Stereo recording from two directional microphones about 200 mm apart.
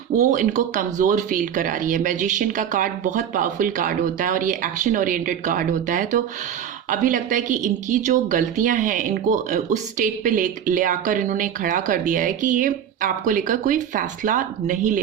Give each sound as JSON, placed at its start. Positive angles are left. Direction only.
{"t": 0.2, "sound": "a woman's voice", "side_deg": -40}